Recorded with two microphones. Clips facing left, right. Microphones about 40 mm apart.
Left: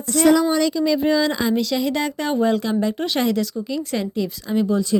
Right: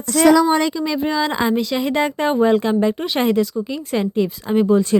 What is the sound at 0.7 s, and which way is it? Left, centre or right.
Speech, centre.